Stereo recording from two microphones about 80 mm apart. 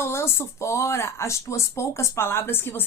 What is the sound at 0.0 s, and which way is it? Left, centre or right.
Speech, left.